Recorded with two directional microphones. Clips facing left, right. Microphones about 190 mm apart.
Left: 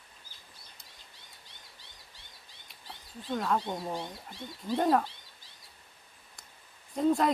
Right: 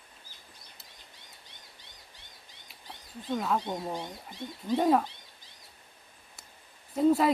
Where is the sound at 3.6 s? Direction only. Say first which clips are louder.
Right 1 dB; 15° right (ahead or behind).